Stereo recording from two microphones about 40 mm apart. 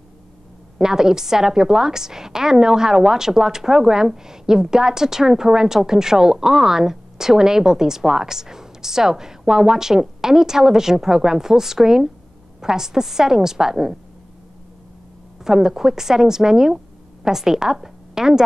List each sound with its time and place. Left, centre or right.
0.7 s a woman's voice: centre
15.4 s a woman's voice: centre